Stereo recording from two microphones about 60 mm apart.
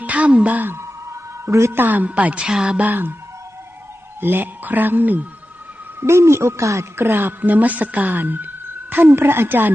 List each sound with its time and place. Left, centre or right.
0.0 s speech: right
0.7 s music: right
1.7 s music: right
2.9 s speech: right
4.2 s speech: right
6.0 s speech: right
7.0 s speech: right